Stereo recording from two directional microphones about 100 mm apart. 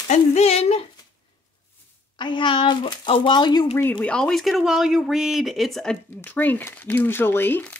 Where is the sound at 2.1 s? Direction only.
50° left (ahead or behind).